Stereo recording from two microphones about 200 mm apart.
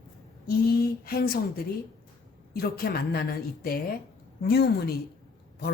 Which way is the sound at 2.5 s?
50° left (ahead or behind).